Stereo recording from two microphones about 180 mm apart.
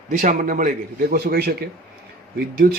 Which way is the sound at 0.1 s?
45° right (ahead or behind).